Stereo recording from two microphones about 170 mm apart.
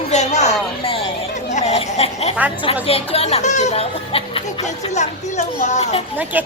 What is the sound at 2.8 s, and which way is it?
Speech, 35° left (ahead or behind).